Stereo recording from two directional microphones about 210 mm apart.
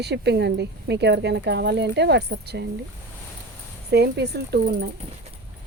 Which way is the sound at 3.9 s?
50° right (ahead or behind).